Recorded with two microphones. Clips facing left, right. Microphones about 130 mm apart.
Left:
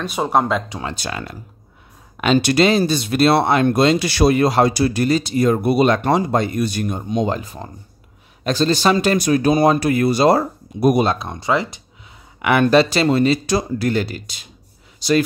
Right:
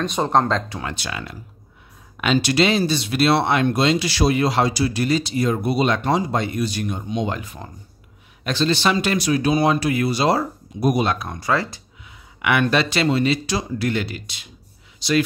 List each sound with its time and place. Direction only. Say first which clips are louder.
0.0 s speech: even; 5° left (ahead or behind)
0.9 s speech: left 3 dB; 40° left (ahead or behind)
2.3 s speech: left 3 dB; 50° left (ahead or behind)
11.1 s speech: left 2 dB; 25° left (ahead or behind)
12.4 s speech: left 5 dB; 40° left (ahead or behind)